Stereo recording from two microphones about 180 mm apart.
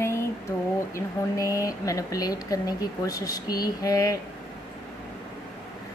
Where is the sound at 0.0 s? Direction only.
15° left (ahead or behind).